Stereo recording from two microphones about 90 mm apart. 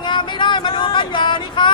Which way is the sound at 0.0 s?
60° left (ahead or behind).